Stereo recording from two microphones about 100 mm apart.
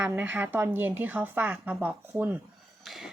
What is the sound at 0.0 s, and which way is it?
A woman's voice, 20° right (ahead or behind).